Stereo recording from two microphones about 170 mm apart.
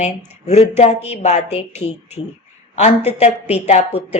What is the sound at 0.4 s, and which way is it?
Speech, 40° left (ahead or behind).